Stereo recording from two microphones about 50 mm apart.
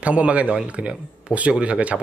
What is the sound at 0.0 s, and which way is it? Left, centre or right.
Speech, right.